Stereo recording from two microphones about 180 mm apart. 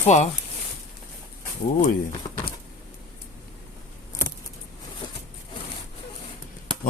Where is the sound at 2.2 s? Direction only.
25° left (ahead or behind).